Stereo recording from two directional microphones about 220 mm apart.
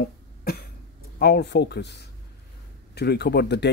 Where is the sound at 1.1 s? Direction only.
45° left (ahead or behind).